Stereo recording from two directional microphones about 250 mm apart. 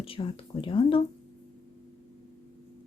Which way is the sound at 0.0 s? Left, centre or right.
Left.